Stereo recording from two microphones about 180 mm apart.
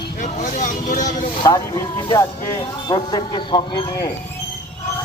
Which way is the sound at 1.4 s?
20° left (ahead or behind).